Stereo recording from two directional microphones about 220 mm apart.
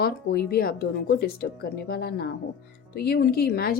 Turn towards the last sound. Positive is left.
turn(degrees=45)  # may be behind; listen again after turning